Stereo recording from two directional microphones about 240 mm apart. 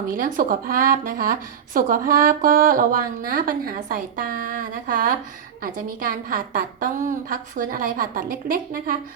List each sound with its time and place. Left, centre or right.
0.1 s a woman's voice: right